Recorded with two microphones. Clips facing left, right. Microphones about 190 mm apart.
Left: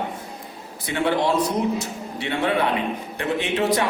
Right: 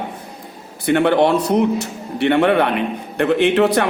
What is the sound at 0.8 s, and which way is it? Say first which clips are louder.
A man's voice: right 7 dB; 60° right (ahead or behind).